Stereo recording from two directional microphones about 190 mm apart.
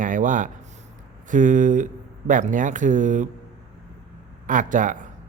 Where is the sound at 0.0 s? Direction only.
45° right (ahead or behind).